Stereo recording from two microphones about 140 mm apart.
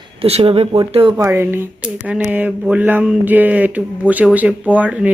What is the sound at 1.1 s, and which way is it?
Speech, 20° right (ahead or behind).